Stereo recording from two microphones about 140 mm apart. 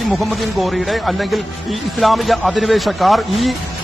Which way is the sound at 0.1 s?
Centre (ahead or behind).